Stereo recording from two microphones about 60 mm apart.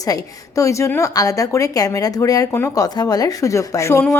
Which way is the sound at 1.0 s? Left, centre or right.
Left.